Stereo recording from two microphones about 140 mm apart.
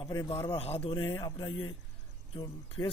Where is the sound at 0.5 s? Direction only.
45° left (ahead or behind).